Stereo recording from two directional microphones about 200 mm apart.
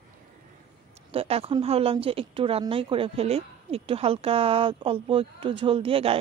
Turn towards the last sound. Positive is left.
turn(degrees=-30)  # may be behind; listen again after turning